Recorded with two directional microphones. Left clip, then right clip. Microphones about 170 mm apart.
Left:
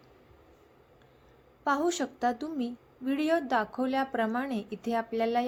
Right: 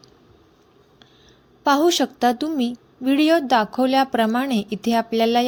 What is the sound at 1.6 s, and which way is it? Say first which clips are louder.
A woman's voice: right 11 dB; 45° right (ahead or behind).